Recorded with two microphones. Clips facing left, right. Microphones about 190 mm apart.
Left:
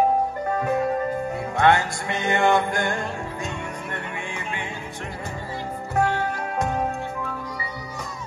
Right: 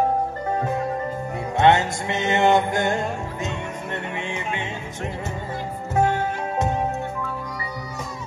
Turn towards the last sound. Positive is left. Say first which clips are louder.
# right 2 dB
turn(degrees=-20)  # may be behind; listen again after turning